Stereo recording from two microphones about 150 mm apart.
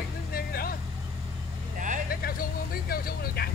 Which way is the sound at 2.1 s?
80° left.